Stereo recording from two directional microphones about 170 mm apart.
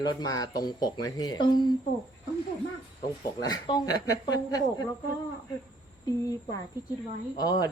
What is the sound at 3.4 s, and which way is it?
A woman's voice, 25° left (ahead or behind).